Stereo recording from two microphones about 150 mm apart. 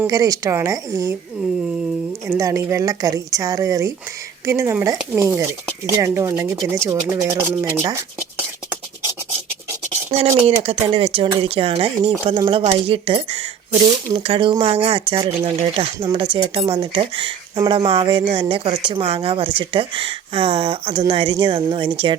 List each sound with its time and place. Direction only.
0.1 s speech: 25° right (ahead or behind)
2.2 s speech: 20° right (ahead or behind)
10.1 s speech: 45° right (ahead or behind)
12.4 s speech: 30° right (ahead or behind)